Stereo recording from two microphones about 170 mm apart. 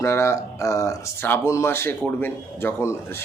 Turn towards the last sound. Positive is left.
turn(degrees=15)  # may be behind; listen again after turning